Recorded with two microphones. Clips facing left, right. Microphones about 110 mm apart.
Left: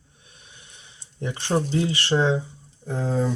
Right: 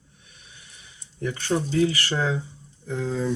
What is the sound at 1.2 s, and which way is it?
Speech, 30° left (ahead or behind).